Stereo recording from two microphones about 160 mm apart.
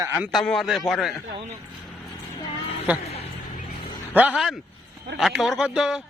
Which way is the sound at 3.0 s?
40° left (ahead or behind).